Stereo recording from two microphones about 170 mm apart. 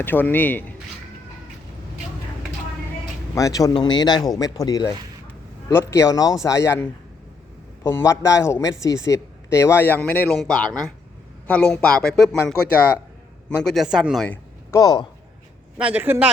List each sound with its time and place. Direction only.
0.0 s speech: 10° left (ahead or behind)
3.3 s speech: 20° left (ahead or behind)
7.9 s speech: 15° left (ahead or behind); by 14.3 s 5° right (ahead or behind)
14.3 s speech: 20° left (ahead or behind)
15.8 s a man's voice: 10° right (ahead or behind)